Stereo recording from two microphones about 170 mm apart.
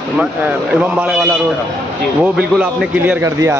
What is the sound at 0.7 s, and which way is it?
A man's voice, 5° right (ahead or behind).